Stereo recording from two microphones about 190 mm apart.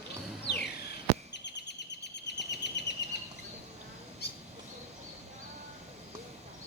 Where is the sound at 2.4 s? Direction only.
65° left (ahead or behind).